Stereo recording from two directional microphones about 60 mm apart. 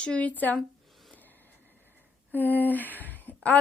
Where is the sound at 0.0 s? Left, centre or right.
Left.